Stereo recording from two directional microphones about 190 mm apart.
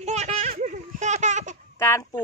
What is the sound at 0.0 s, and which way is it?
Baby laughter, 35° right (ahead or behind).